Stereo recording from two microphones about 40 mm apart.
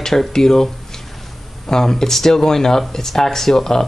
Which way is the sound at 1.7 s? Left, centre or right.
Centre.